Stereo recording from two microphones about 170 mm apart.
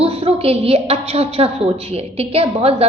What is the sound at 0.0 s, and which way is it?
A woman's voice, 30° right (ahead or behind).